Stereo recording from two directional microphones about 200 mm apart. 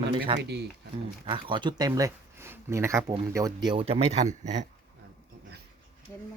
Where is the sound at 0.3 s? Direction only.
25° right (ahead or behind).